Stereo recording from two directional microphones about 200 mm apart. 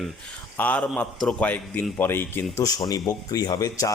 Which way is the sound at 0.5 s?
10° left (ahead or behind).